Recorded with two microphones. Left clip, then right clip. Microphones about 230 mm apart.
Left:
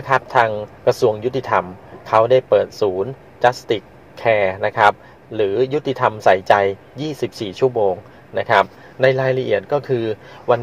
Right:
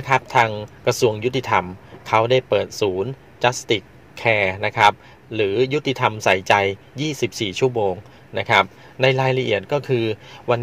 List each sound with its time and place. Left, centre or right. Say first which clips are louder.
0.0 s a man's voice: left 2 dB; right